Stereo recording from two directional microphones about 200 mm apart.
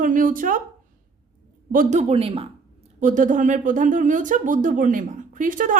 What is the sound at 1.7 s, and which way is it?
Speech, 35° right (ahead or behind).